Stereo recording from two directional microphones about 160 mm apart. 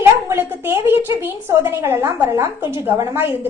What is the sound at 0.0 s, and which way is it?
A woman's voice, 15° right (ahead or behind).